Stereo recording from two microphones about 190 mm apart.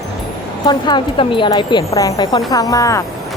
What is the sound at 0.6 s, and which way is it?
Speech, 25° left (ahead or behind).